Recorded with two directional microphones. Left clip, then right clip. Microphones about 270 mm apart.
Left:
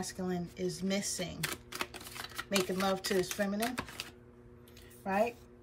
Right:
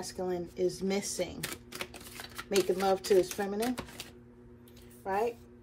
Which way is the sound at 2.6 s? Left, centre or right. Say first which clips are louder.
Right 5 dB; centre.